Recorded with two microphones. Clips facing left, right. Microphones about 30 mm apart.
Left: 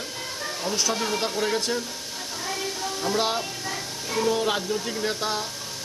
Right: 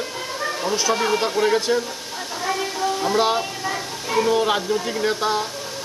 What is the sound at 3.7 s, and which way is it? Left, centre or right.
Speech, right.